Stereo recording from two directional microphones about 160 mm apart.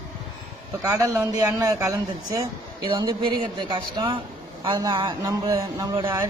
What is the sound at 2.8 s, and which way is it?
Speech, 30° right (ahead or behind).